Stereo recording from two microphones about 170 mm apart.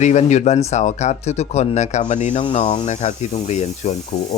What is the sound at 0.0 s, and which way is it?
Speech, 45° left (ahead or behind).